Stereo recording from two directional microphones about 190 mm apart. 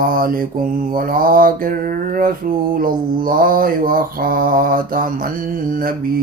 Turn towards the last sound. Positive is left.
turn(degrees=-45)  # may be behind; listen again after turning